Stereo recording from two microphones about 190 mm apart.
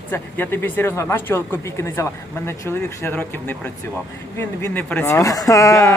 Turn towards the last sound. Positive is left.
turn(degrees=15)  # may be behind; listen again after turning